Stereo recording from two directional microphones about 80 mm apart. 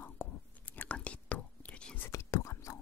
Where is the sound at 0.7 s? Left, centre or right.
Centre.